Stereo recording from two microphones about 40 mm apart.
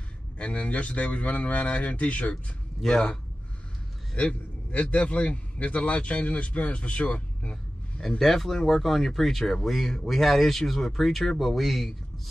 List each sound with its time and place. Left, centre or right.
0.4 s speech: left
2.8 s speech: centre
4.1 s speech: left
4.6 s speech: left
8.2 s speech: centre